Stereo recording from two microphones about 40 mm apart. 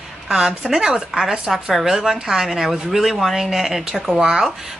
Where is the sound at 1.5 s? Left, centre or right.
Centre.